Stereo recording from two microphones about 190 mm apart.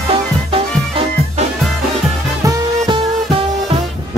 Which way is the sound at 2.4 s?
20° right (ahead or behind).